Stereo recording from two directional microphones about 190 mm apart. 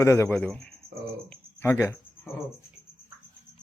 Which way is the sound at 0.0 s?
15° left (ahead or behind).